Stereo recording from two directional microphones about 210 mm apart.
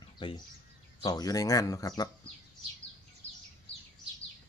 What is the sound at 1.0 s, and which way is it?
Speech, 20° left (ahead or behind).